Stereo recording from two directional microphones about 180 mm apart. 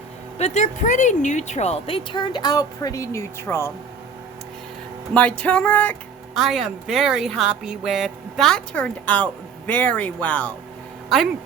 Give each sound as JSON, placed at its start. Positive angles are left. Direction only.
{"t": 0.3, "sound": "speech", "side_deg": 40}
{"t": 5.1, "sound": "a sound", "side_deg": 5}
{"t": 6.3, "sound": "speech", "side_deg": 0}